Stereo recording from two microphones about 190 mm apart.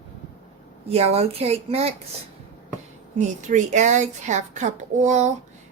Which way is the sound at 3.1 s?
40° right (ahead or behind).